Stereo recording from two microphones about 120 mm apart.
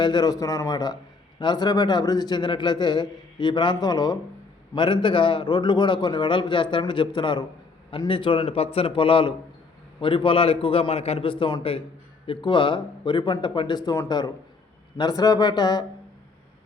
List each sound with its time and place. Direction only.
0.0 s a man's voice: 35° left (ahead or behind)